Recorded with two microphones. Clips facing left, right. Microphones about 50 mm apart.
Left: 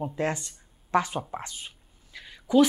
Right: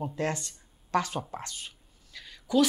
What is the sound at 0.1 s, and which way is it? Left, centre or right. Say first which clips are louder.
Speech: left 2 dB; centre.